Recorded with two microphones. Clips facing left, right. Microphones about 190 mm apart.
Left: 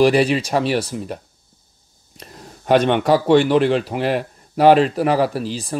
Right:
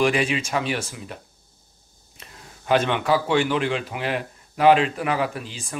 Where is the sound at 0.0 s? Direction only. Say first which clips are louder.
Left 7 dB; 35° left (ahead or behind).